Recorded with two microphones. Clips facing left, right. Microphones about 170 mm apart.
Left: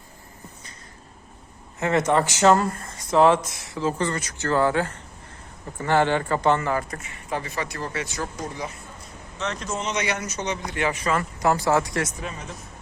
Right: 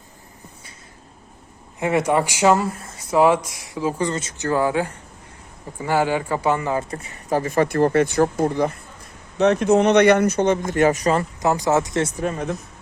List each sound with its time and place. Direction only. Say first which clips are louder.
1.8 s speech: right 2 dB; 10° right (ahead or behind)
7.0 s speech: right 8 dB; 40° right (ahead or behind)
11.3 s speech: right 2 dB; 20° right (ahead or behind)
12.2 s speech: right 10 dB; 55° right (ahead or behind)